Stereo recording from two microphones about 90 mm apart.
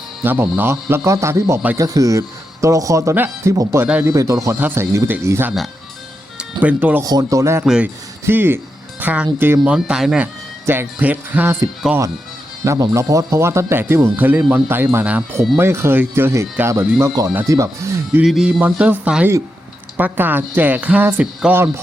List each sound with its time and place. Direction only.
0.2 s speech: 25° right (ahead or behind)
6.3 s speech: 15° right (ahead or behind)
7.0 s speech: 45° right (ahead or behind)
7.6 s speech: 10° right (ahead or behind)
8.2 s speech: 25° right (ahead or behind); by 10.2 s 5° right (ahead or behind)
10.7 s speech: 20° right (ahead or behind)
12.6 s speech: 35° right (ahead or behind)
18.2 s music: 5° right (ahead or behind)
18.4 s speech: 15° right (ahead or behind)